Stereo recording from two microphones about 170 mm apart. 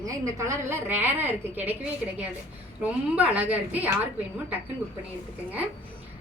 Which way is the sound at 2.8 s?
10° right (ahead or behind).